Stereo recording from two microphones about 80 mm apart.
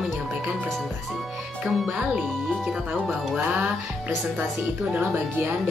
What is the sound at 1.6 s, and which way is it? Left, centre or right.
Speech, centre.